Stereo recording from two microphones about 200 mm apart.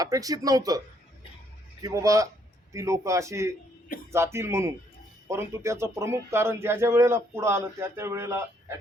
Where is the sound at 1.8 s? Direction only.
15° right (ahead or behind).